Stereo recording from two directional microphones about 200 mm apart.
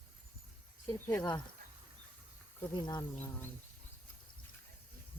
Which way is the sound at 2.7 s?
20° left (ahead or behind).